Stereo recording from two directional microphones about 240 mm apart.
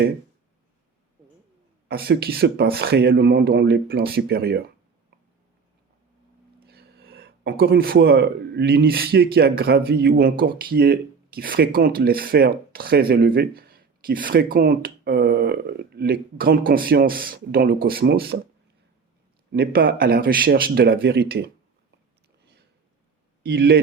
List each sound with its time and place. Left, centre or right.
1.9 s speech: right
6.6 s speech: right
19.5 s speech: right
23.4 s speech: right